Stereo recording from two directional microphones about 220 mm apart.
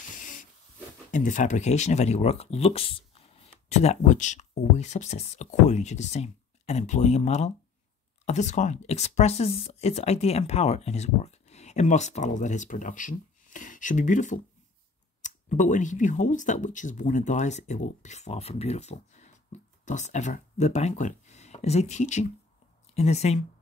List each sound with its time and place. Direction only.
0.2 s hiss: 35° left (ahead or behind)
1.1 s speech: 35° left (ahead or behind)